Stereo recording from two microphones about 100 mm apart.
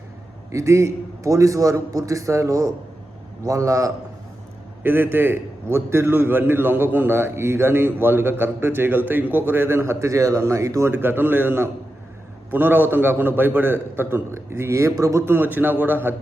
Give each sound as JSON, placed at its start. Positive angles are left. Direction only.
{"t": 0.5, "sound": "a man's voice", "side_deg": -30}
{"t": 4.8, "sound": "a man's voice", "side_deg": -20}
{"t": 10.9, "sound": "a man's voice", "side_deg": -20}